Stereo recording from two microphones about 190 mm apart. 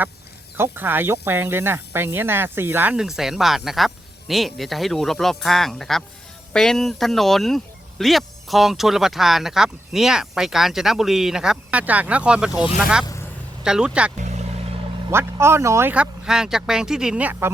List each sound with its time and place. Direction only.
0.5 s speech: 10° right (ahead or behind)
13.7 s speech: 5° right (ahead or behind)
14.2 s vehicle: 35° right (ahead or behind)
15.1 s speech: 15° right (ahead or behind)